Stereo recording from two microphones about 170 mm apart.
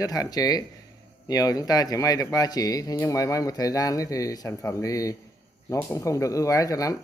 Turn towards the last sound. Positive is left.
turn(degrees=20)  # may be behind; listen again after turning